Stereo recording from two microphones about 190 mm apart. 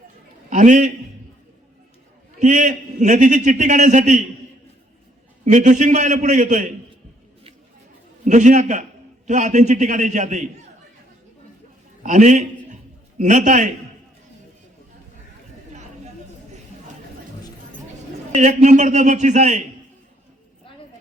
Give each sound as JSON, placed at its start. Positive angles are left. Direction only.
{"t": 0.5, "sound": "a man's voice", "side_deg": -40}
{"t": 2.4, "sound": "a man's voice", "side_deg": -40}
{"t": 5.5, "sound": "a man's voice", "side_deg": -40}
{"t": 8.2, "sound": "a man's voice", "side_deg": -40}
{"t": 12.0, "sound": "a man's voice", "side_deg": -40}
{"t": 18.3, "sound": "a man's voice", "side_deg": -40}